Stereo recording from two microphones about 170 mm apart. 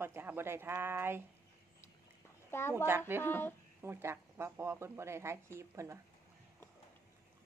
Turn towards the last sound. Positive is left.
turn(degrees=-15)  # may be behind; listen again after turning